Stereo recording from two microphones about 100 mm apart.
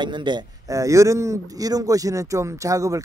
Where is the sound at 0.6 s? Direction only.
30° right (ahead or behind).